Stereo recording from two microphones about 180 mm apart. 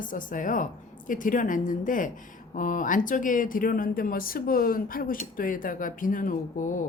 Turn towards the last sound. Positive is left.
turn(degrees=45)  # may be behind; listen again after turning